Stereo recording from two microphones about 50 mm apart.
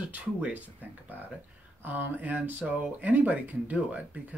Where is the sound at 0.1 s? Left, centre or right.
Right.